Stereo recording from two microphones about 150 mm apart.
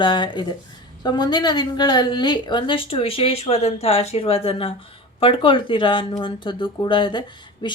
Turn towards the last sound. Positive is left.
turn(degrees=30)  # may be behind; listen again after turning